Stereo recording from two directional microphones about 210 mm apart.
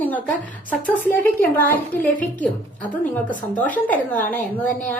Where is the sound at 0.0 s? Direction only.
5° left (ahead or behind).